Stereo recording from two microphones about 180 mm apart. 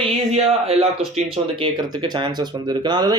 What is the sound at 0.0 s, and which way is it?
Speech, 30° right (ahead or behind).